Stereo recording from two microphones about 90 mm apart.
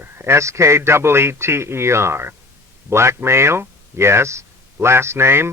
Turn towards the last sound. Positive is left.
turn(degrees=-30)  # may be behind; listen again after turning